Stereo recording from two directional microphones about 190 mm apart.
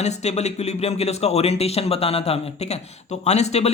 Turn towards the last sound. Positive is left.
turn(degrees=35)  # may be behind; listen again after turning